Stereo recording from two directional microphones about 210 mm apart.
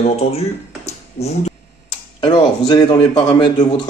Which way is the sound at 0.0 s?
30° left (ahead or behind).